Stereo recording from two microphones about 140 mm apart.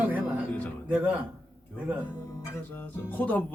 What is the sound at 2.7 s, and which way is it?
Speech, 10° left (ahead or behind).